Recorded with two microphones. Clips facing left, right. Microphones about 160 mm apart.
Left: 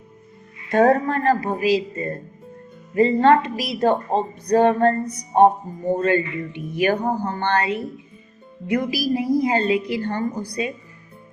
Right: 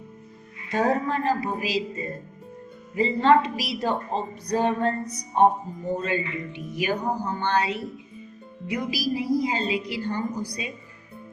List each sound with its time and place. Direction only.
0.7 s a woman's voice: 55° left (ahead or behind)